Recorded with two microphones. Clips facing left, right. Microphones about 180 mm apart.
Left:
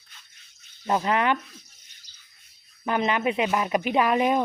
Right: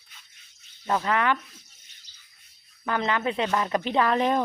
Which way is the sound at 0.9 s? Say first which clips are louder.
Left 1 dB; 20° left (ahead or behind).